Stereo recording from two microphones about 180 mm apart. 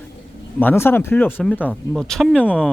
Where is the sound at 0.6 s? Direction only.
10° left (ahead or behind).